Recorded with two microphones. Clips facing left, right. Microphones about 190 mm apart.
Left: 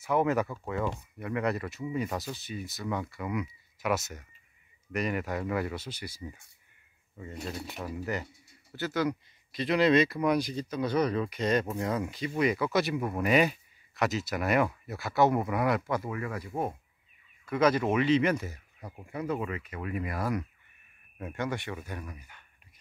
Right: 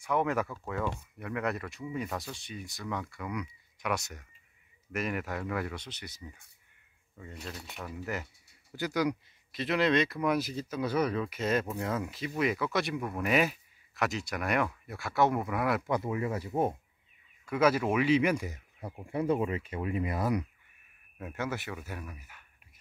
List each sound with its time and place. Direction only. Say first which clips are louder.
0.0 s speech: left 3 dB; 5° left (ahead or behind)
8.7 s speech: even; 15° right (ahead or behind)
9.5 s speech: left 3 dB; centre (ahead or behind)
15.9 s speech: right 2 dB; 20° right (ahead or behind)
17.5 s speech: left 1 dB; 5° right (ahead or behind)
19.0 s speech: right 4 dB; 30° right (ahead or behind)
21.2 s speech: left 2 dB; 5° right (ahead or behind)